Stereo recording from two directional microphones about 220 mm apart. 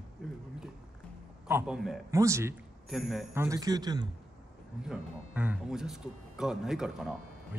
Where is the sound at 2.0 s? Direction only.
15° right (ahead or behind).